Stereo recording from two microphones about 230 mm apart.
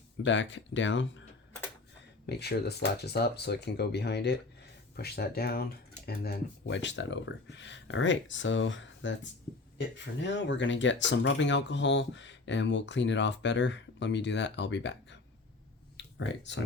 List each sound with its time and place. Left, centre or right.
0.3 s speech: left
2.2 s speech: left
16.0 s a sound: left